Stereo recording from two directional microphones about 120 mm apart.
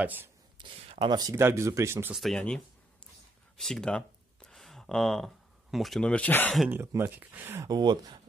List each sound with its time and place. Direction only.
0.0 s speech: 15° right (ahead or behind)
0.7 s a sound: 50° right (ahead or behind)
1.3 s speech: 20° right (ahead or behind)
2.1 s speech: 5° left (ahead or behind)
6.7 s speech: 20° right (ahead or behind)
7.6 s speech: 35° right (ahead or behind)